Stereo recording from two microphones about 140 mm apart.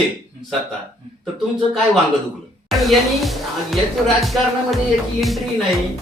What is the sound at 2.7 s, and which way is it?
Speech, centre (ahead or behind).